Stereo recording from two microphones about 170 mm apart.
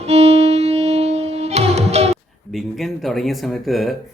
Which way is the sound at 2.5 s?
Centre (ahead or behind).